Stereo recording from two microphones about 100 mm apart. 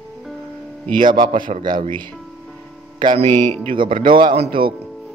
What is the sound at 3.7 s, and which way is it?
Speech, 55° right (ahead or behind).